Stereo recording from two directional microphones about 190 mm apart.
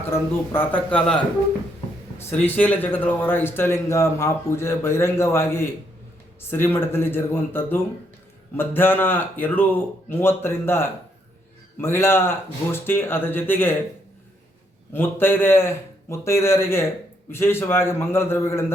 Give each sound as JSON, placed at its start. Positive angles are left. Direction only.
{"t": 0.1, "sound": "a man's voice", "side_deg": 10}
{"t": 14.9, "sound": "a man's voice", "side_deg": 10}